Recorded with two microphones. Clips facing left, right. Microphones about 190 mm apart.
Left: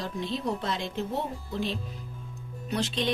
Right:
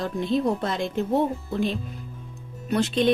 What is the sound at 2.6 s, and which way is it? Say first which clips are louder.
Speech: right 7 dB; 50° right (ahead or behind).